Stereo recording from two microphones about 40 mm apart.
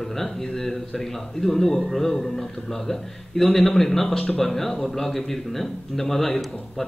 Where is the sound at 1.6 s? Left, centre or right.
Centre.